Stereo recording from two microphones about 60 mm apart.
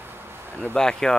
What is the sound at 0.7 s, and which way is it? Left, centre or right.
Speech, centre.